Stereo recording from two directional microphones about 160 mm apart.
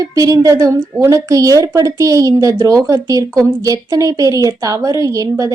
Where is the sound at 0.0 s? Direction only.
20° right (ahead or behind).